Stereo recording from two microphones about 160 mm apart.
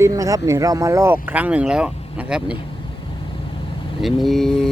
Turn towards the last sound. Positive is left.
turn(degrees=5)  # may be behind; listen again after turning